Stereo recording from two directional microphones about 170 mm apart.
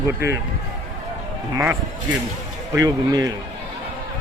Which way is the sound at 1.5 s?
15° right (ahead or behind).